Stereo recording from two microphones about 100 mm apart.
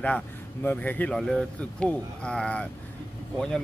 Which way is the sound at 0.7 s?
20° left (ahead or behind).